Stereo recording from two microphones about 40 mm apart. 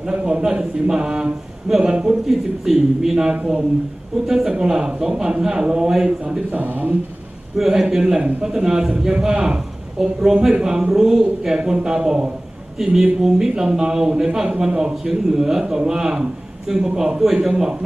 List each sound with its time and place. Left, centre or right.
0.1 s a man's voice: right
2.2 s a man's voice: centre
6.5 s speech: right
7.5 s a man's voice: centre
8.2 s a man's voice: right
14.7 s a man's voice: right
15.3 s a man's voice: centre